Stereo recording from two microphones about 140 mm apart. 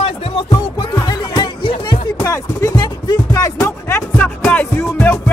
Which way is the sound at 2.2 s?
20° left (ahead or behind).